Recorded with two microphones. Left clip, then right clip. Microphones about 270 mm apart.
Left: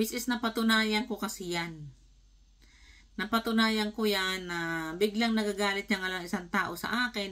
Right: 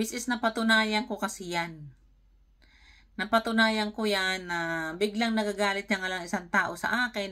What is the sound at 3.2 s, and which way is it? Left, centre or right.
Speech, centre.